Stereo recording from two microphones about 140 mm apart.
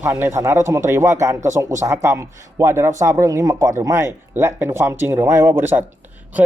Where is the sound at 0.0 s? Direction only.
15° right (ahead or behind).